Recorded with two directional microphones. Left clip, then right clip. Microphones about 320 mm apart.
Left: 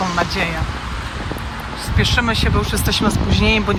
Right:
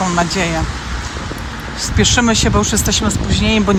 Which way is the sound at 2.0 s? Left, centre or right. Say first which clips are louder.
Right 4 dB; centre.